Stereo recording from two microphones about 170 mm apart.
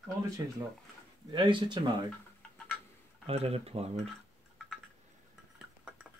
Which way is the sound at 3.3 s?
35° right (ahead or behind).